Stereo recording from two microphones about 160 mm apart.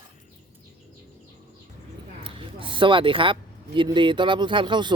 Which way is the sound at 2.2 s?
30° right (ahead or behind).